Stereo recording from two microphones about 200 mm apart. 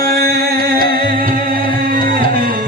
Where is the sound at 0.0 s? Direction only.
50° right (ahead or behind).